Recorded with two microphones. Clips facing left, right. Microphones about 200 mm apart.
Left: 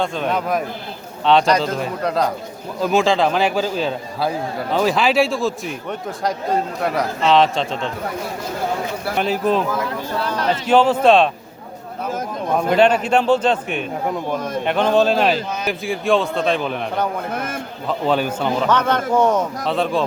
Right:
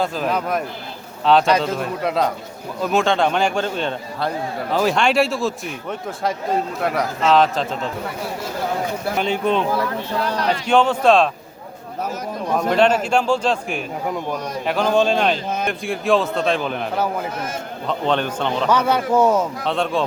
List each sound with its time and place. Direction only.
0.0 s a man's voice: 5° right (ahead or behind)
9.1 s a man's voice: 5° left (ahead or behind)
10.7 s a man's voice: 5° left (ahead or behind)
12.5 s a man's voice: 5° left (ahead or behind)
14.3 s a man's voice: 50° left (ahead or behind)
14.6 s a man's voice: centre (ahead or behind)
17.3 s a man's voice: 55° left (ahead or behind)
17.8 s a man's voice: 5° left (ahead or behind)
18.7 s a man's voice: 10° right (ahead or behind)